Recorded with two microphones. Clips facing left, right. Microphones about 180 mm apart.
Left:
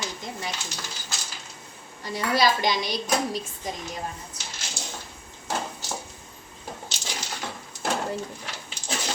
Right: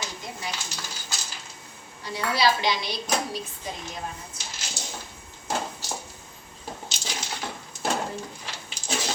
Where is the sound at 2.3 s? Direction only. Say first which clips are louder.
Left 1 dB; 45° left (ahead or behind).